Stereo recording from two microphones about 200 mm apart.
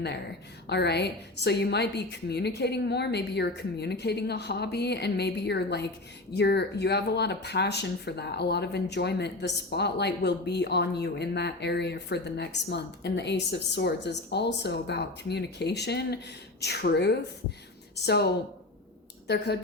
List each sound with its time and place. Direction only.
0.7 s speech: 55° left (ahead or behind)